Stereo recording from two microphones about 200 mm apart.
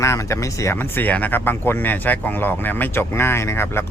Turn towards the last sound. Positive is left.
turn(degrees=10)  # may be behind; listen again after turning